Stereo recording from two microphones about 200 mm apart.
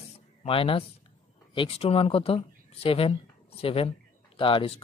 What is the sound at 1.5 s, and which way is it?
Speech, 25° left (ahead or behind).